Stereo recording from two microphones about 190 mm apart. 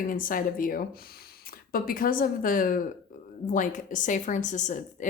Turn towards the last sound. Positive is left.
turn(degrees=40)  # may be behind; listen again after turning